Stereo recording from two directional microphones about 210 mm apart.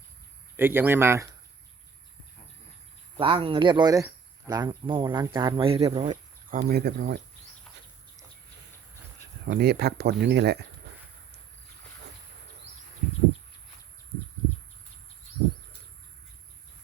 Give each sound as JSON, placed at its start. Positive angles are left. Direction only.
{"t": 0.5, "sound": "speech", "side_deg": -10}
{"t": 3.2, "sound": "speech", "side_deg": -25}
{"t": 6.5, "sound": "speech", "side_deg": -45}
{"t": 9.5, "sound": "speech", "side_deg": -50}